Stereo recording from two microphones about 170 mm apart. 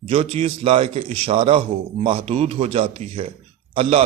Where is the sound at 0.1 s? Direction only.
35° right (ahead or behind).